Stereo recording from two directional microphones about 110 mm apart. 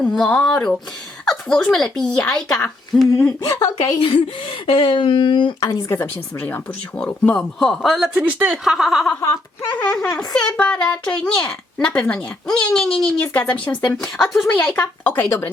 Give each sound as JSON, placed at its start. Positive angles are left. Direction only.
{"t": 0.0, "sound": "a child's voice", "side_deg": 10}
{"t": 3.4, "sound": "a woman's voice", "side_deg": 35}
{"t": 4.6, "sound": "speech", "side_deg": 55}
{"t": 5.6, "sound": "a child's voice", "side_deg": 25}
{"t": 8.1, "sound": "a woman's voice", "side_deg": -10}
{"t": 9.2, "sound": "a sound", "side_deg": 25}
{"t": 9.7, "sound": "a child's voice", "side_deg": 10}
{"t": 13.9, "sound": "a woman's voice", "side_deg": 5}
{"t": 14.6, "sound": "a child's voice", "side_deg": 15}